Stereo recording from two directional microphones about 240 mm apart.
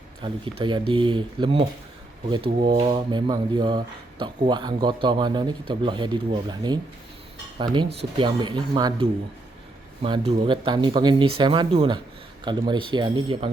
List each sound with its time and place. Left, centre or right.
0.2 s speech: right
2.6 s speech: right